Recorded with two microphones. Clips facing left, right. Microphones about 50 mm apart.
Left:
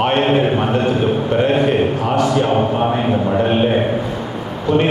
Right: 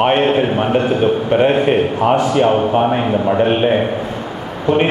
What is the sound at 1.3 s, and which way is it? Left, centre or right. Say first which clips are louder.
A man's voice: right 2 dB; right.